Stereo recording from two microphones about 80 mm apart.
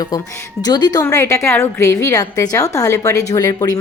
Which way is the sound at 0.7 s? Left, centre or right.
Left.